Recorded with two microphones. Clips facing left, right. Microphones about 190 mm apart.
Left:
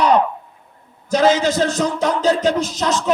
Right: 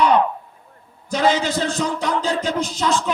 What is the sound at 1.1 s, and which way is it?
Music, 45° left (ahead or behind).